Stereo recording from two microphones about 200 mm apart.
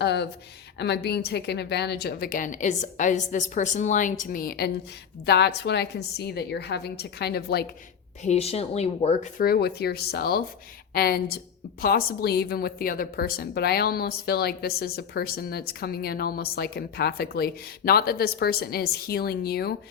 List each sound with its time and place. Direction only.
0.0 s a woman's voice: 60° left (ahead or behind)
8.2 s speech: 30° left (ahead or behind)
9.4 s a woman's voice: 50° left (ahead or behind)